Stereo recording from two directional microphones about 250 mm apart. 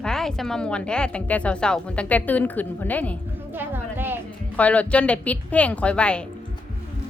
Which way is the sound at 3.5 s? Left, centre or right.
Centre.